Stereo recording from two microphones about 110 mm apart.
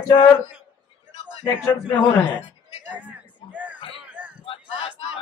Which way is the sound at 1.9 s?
15° left (ahead or behind).